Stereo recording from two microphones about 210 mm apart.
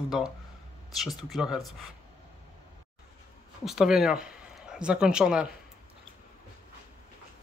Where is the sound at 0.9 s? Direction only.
Centre (ahead or behind).